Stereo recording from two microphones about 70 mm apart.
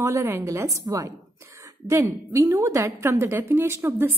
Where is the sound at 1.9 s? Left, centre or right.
Right.